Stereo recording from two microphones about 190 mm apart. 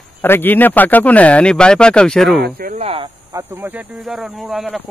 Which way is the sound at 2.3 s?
55° right (ahead or behind).